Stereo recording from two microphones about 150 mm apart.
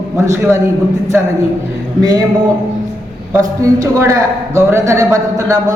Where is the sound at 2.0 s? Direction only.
25° right (ahead or behind).